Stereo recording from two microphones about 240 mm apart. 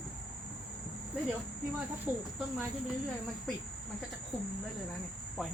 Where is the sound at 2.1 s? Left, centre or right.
Centre.